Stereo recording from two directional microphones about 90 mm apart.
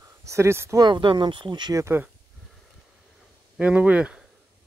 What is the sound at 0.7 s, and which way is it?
Speech, 55° right (ahead or behind).